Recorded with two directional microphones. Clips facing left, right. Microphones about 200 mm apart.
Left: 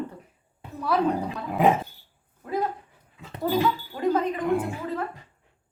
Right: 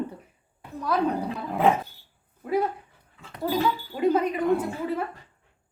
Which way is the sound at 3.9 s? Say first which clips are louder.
Right 4 dB; 20° right (ahead or behind).